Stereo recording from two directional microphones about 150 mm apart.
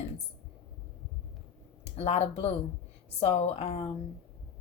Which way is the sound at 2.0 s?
45° left (ahead or behind).